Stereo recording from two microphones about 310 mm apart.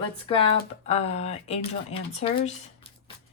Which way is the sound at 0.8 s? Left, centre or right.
Centre.